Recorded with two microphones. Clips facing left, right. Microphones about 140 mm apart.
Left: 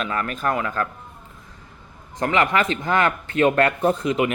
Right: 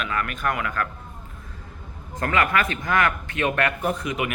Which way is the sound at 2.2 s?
25° left (ahead or behind).